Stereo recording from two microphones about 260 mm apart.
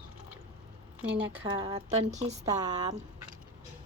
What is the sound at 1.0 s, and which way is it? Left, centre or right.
Speech, centre.